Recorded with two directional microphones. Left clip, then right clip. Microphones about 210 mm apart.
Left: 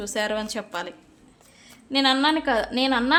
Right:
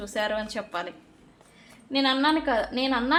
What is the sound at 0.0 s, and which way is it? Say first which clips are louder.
A woman's voice: left 2 dB; 25° left (ahead or behind).